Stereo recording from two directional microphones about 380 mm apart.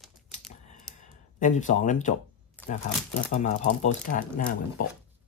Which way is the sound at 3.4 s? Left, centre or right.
Centre.